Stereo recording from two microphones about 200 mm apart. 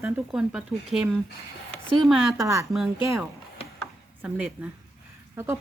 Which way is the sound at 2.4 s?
15° right (ahead or behind).